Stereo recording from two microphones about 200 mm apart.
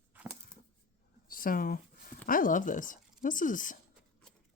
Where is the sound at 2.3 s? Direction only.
40° left (ahead or behind).